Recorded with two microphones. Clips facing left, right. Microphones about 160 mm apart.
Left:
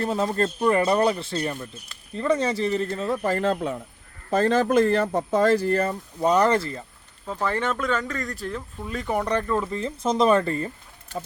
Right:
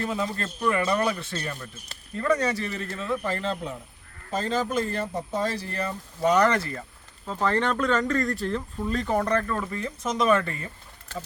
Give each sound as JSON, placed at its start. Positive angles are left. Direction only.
{"t": 0.0, "sound": "speech", "side_deg": 40}
{"t": 6.2, "sound": "speech", "side_deg": 30}
{"t": 7.4, "sound": "speech", "side_deg": 10}